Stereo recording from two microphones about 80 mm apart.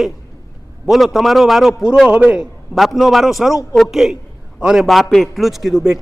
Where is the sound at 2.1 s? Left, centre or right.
Centre.